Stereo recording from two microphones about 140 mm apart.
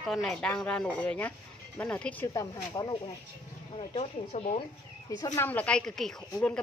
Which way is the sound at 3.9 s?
50° left (ahead or behind).